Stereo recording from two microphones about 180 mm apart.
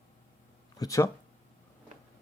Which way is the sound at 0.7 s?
20° left (ahead or behind).